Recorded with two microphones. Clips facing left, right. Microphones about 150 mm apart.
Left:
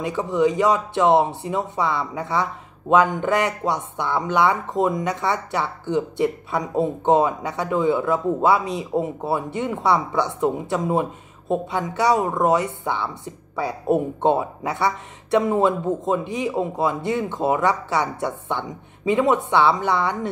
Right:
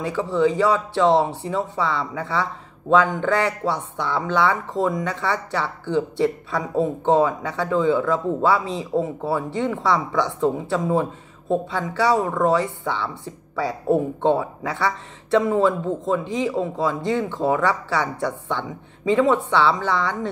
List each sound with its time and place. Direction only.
0.0 s speech: 20° left (ahead or behind)